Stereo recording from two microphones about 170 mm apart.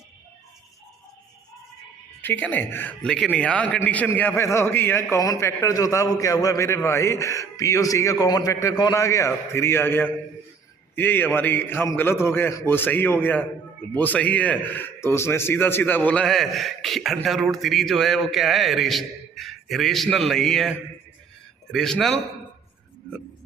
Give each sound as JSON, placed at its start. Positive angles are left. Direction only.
{"t": 2.2, "sound": "a man's voice", "side_deg": 10}